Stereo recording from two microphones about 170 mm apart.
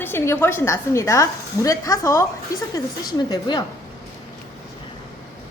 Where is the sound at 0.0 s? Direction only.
10° left (ahead or behind).